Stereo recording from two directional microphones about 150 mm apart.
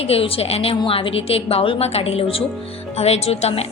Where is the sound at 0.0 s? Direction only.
40° left (ahead or behind).